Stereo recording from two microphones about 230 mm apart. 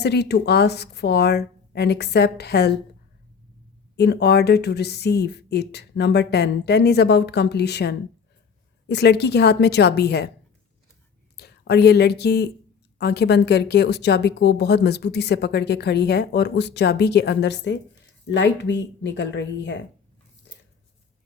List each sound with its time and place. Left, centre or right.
0.0 s a woman's voice: left
3.9 s a woman's voice: left
11.3 s a woman's voice: left